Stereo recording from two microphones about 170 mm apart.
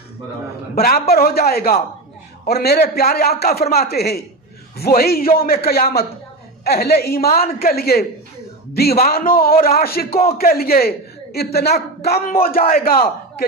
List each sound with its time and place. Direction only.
0.7 s a man's voice: 60° left (ahead or behind)